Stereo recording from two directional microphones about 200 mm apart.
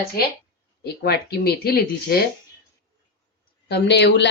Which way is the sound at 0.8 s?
50° left (ahead or behind).